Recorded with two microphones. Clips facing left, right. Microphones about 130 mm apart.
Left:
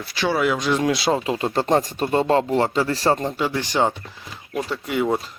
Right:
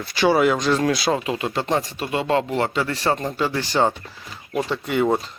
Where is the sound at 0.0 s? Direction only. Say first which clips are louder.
Right 4 dB; centre (ahead or behind).